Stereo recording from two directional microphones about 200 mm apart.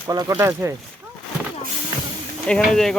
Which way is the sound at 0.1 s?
15° right (ahead or behind).